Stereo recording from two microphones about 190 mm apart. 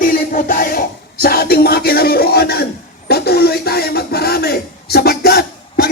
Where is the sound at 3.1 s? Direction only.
55° left (ahead or behind).